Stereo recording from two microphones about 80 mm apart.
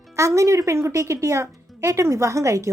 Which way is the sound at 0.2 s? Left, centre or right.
Right.